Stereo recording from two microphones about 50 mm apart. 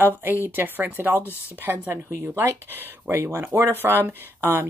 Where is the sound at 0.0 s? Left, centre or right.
Right.